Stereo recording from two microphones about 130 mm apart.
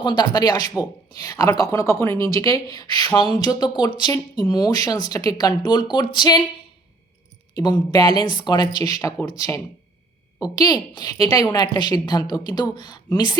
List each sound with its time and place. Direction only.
0.0 s speech: 35° left (ahead or behind)
7.5 s a woman's voice: 30° left (ahead or behind)